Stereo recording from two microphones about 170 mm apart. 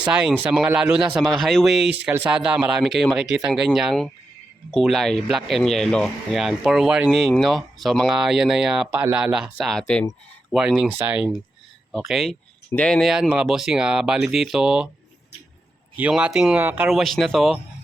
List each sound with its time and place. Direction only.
0.0 s speech: 5° right (ahead or behind)
16.0 s speech: 10° right (ahead or behind)